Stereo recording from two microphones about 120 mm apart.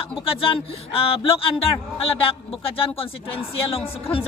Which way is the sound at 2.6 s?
50° left (ahead or behind).